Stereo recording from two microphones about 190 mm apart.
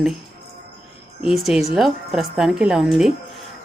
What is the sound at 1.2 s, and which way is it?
Speech, centre (ahead or behind).